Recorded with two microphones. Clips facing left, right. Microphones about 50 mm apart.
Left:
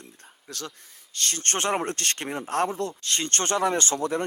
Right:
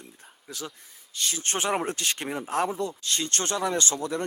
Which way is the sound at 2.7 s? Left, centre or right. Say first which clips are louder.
Left 1 dB; left.